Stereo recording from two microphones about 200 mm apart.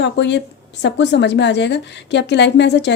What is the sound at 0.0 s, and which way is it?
A woman's voice, 60° left (ahead or behind).